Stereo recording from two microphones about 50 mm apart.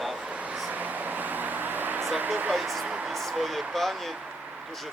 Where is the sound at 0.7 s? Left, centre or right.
Right.